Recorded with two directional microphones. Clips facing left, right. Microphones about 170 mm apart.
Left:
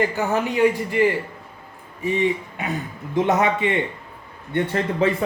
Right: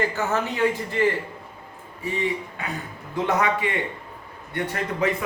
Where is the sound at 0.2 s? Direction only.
15° left (ahead or behind).